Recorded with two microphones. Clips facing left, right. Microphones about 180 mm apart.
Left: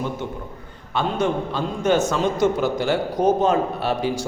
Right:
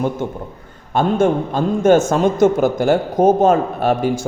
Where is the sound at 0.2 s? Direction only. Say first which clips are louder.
Right 5 dB; 50° right (ahead or behind).